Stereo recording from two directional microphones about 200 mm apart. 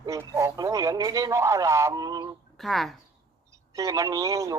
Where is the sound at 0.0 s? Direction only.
15° right (ahead or behind).